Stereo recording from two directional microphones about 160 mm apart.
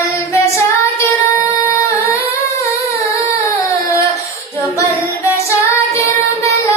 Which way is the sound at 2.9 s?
20° left (ahead or behind).